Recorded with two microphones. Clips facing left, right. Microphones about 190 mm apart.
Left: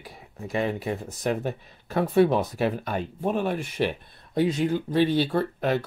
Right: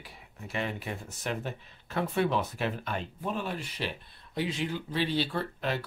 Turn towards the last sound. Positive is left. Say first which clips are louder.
# left 8 dB
turn(degrees=50)  # may be behind; listen again after turning